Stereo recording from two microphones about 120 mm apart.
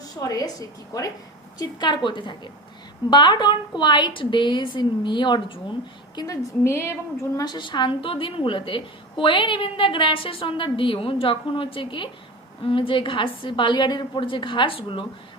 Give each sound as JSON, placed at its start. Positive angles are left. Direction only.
{"t": 0.2, "sound": "a woman's voice", "side_deg": 30}
{"t": 6.1, "sound": "a woman's voice", "side_deg": 25}
{"t": 7.4, "sound": "a woman's voice", "side_deg": 35}